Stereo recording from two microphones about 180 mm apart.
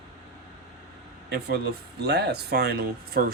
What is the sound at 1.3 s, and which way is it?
A man's voice, 65° right (ahead or behind).